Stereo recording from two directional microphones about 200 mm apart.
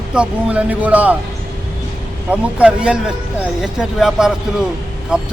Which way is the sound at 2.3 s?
5° right (ahead or behind).